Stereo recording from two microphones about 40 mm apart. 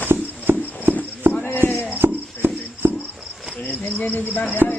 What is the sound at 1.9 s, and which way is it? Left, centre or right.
Music, right.